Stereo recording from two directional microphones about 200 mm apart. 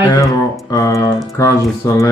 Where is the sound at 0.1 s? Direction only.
15° left (ahead or behind).